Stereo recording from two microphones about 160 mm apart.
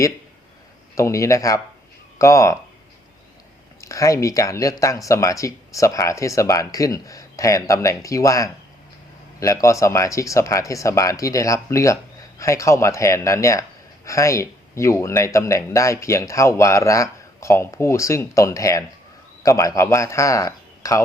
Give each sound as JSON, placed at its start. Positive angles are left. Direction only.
{"t": 0.9, "sound": "a man's voice", "side_deg": 20}
{"t": 3.8, "sound": "a man's voice", "side_deg": 20}